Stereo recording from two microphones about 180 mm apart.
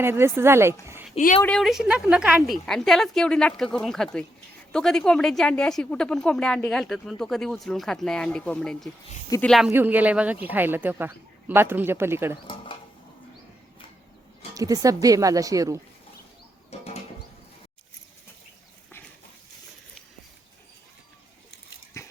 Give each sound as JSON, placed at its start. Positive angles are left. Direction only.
{"t": 0.0, "sound": "speech", "side_deg": -15}
{"t": 1.4, "sound": "a woman's voice", "side_deg": 5}
{"t": 14.5, "sound": "speech", "side_deg": -20}
{"t": 16.7, "sound": "bird", "side_deg": 35}